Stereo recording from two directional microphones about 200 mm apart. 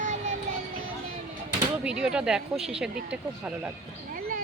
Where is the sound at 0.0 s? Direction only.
40° right (ahead or behind).